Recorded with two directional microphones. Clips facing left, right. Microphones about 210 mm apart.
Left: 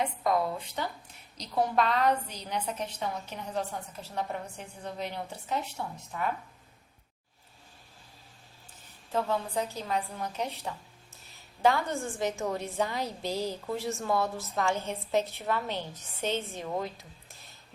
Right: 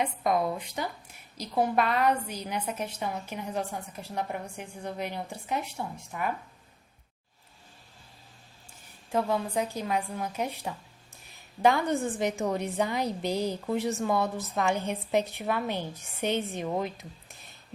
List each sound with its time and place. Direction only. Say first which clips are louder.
0.0 s a woman's voice: right 1 dB; 15° right (ahead or behind)
9.1 s a woman's voice: right 2 dB; 15° right (ahead or behind)